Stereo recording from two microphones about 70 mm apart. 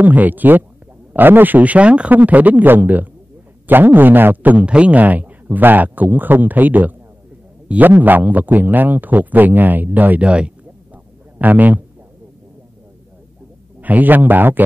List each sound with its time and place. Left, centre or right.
0.0 s a man's voice: right
13.7 s a man's voice: right